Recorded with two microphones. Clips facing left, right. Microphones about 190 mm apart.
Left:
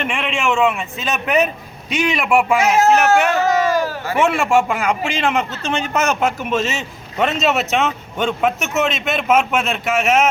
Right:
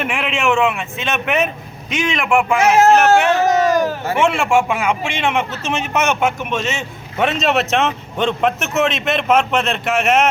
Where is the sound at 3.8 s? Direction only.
25° right (ahead or behind).